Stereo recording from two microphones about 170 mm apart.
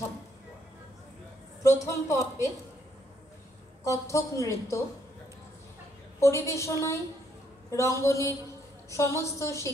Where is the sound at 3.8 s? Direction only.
15° left (ahead or behind).